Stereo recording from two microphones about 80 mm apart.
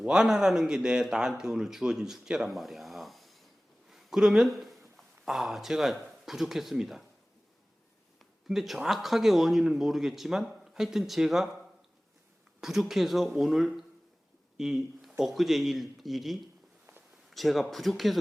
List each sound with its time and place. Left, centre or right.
0.0 s speech: centre
8.2 s speech: centre
12.5 s a sound: centre
12.9 s speech: centre